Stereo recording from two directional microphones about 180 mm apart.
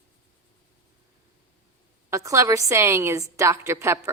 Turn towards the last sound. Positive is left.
turn(degrees=-15)  # may be behind; listen again after turning